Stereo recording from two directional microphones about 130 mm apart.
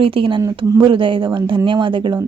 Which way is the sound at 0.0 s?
45° right (ahead or behind).